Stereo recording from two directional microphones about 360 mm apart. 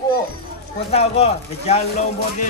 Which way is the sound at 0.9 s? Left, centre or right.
Centre.